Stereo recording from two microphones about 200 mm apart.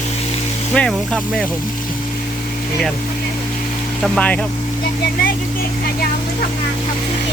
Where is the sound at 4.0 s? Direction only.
5° left (ahead or behind).